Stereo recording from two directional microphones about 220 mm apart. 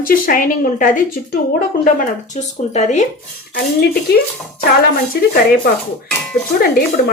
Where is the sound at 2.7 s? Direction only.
30° left (ahead or behind).